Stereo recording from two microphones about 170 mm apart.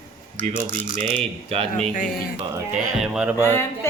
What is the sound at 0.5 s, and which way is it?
Female singing, 50° right (ahead or behind).